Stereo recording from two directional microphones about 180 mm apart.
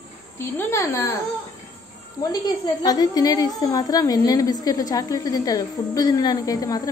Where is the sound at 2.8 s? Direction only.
20° left (ahead or behind).